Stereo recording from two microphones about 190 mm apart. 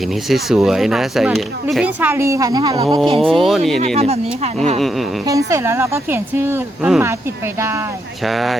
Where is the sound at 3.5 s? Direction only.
Centre (ahead or behind).